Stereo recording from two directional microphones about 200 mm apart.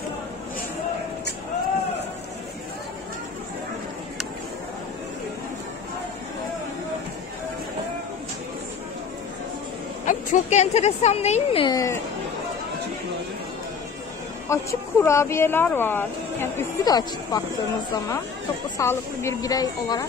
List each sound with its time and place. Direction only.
10.0 s a woman's voice: 35° left (ahead or behind)
11.6 s speech: 15° left (ahead or behind)
14.5 s speech: 15° left (ahead or behind)